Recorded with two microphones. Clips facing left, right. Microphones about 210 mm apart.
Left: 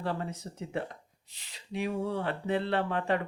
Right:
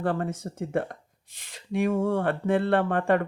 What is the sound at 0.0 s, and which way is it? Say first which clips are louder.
Speech: right 7 dB; 50° right (ahead or behind).